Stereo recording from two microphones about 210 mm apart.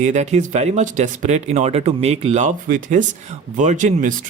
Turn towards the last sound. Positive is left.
turn(degrees=-35)  # may be behind; listen again after turning